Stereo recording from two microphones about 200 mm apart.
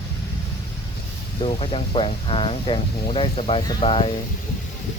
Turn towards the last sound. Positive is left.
turn(degrees=25)  # may be behind; listen again after turning